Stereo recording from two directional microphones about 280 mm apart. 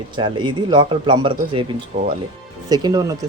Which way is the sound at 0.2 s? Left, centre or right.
Centre.